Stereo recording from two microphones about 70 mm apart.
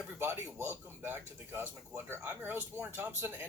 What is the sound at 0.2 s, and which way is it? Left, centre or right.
Speech, right.